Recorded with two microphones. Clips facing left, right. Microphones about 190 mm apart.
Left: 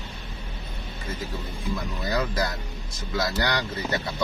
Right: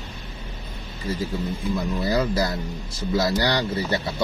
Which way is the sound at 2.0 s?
30° right (ahead or behind).